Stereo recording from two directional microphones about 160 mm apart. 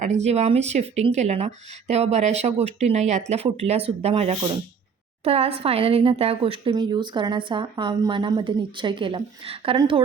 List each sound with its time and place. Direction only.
0.0 s a woman's voice: 45° right (ahead or behind)